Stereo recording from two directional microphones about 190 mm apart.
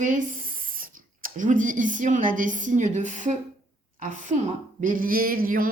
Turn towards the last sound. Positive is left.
turn(degrees=-50)  # may be behind; listen again after turning